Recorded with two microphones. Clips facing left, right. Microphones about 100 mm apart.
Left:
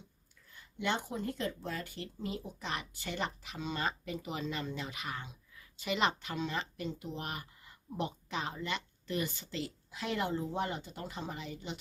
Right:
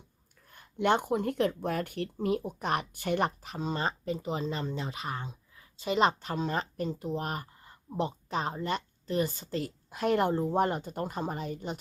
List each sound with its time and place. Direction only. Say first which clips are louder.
0.4 s speech: right 9 dB; 55° right (ahead or behind)